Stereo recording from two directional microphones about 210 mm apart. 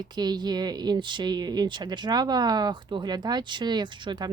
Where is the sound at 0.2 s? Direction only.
20° right (ahead or behind).